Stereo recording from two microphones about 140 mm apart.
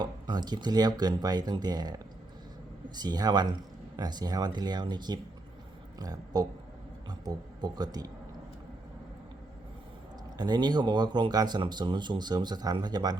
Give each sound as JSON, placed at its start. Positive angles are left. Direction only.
{"t": 0.0, "sound": "speech", "side_deg": -30}
{"t": 10.3, "sound": "speech", "side_deg": -30}